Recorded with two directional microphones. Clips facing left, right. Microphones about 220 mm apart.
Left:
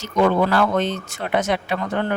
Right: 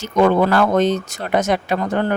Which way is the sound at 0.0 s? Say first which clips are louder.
Right 3 dB; 50° right (ahead or behind).